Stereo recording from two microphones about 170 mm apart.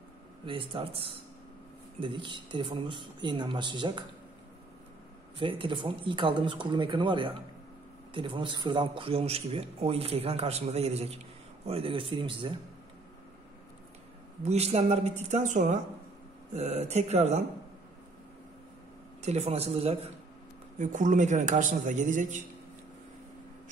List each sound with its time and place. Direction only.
0.5 s a man's voice: 30° right (ahead or behind)
5.4 s a man's voice: 30° right (ahead or behind)
14.4 s a man's voice: 40° right (ahead or behind)
19.2 s a man's voice: 40° right (ahead or behind)
20.8 s a man's voice: 50° right (ahead or behind)